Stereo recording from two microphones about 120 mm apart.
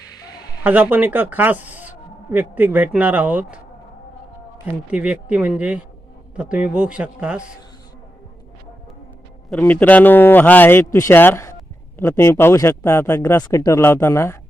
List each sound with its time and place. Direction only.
0.6 s speech: 15° right (ahead or behind)
4.6 s speech: 10° right (ahead or behind)
9.5 s a man's voice: 10° left (ahead or behind)